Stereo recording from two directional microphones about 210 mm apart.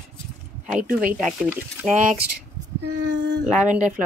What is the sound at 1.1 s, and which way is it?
Speech, 5° right (ahead or behind).